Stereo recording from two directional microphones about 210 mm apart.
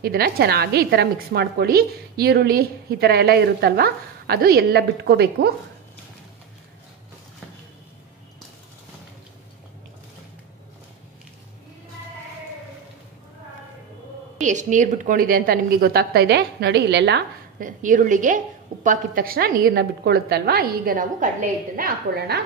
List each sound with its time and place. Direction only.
0.0 s a woman's voice: 50° right (ahead or behind)
14.4 s a woman's voice: 35° right (ahead or behind); by 17.6 s 55° right (ahead or behind)
17.6 s a woman's voice: 35° right (ahead or behind)